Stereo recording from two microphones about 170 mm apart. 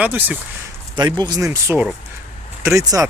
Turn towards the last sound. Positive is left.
turn(degrees=-20)  # may be behind; listen again after turning